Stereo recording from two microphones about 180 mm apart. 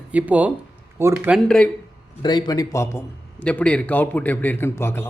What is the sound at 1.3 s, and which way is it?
Speech, 5° left (ahead or behind).